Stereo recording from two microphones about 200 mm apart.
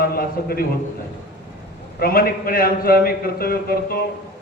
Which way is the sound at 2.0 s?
50° left (ahead or behind).